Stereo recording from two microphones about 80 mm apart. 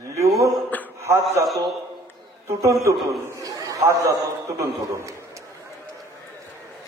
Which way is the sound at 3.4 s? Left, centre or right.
Right.